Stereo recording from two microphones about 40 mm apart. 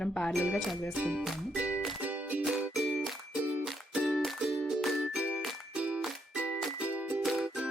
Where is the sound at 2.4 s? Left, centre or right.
Centre.